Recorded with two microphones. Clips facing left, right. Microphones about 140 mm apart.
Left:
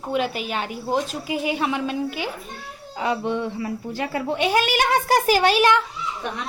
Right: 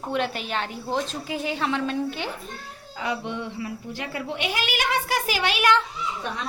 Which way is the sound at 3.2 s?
40° left (ahead or behind).